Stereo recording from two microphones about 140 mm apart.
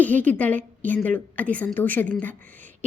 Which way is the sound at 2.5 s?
10° left (ahead or behind).